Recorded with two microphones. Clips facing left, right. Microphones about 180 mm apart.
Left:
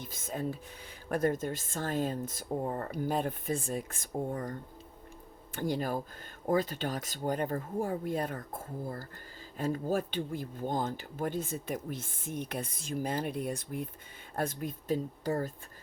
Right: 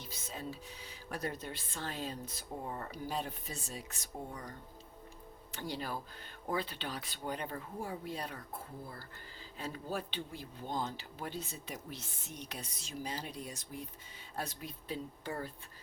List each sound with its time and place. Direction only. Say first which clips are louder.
0.0 s speech: left 8 dB; 50° left (ahead or behind)
5.5 s speech: left 8 dB; 50° left (ahead or behind)